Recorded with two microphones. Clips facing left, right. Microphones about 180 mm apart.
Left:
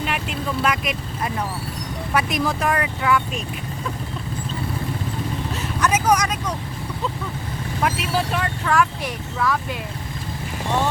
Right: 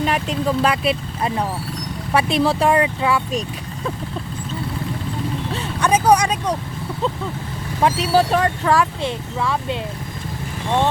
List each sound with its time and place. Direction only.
0.0 s speech: 35° right (ahead or behind)
5.8 s speech: 30° right (ahead or behind)
7.8 s speech: 30° right (ahead or behind)